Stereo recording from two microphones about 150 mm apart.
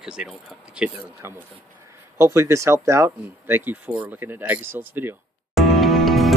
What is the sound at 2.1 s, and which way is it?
Speech, 20° right (ahead or behind).